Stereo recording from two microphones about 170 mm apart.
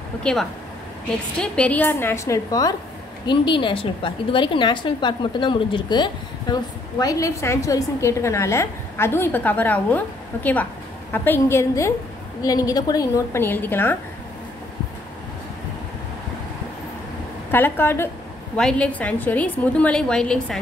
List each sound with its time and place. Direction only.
0.2 s a woman's voice: 5° left (ahead or behind)
17.5 s a woman's voice: 10° left (ahead or behind)